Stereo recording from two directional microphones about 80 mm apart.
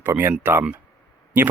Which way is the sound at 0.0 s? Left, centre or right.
Right.